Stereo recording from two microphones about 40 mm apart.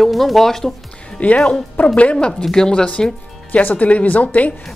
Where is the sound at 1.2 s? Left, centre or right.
Left.